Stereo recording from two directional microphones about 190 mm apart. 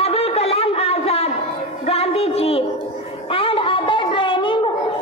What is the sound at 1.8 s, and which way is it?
Music, 30° left (ahead or behind).